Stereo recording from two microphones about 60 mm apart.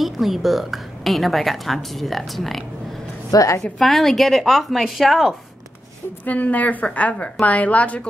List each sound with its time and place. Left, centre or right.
0.0 s a woman's voice: centre
3.3 s a woman's voice: left
3.7 s a woman's voice: centre
6.2 s a woman's voice: left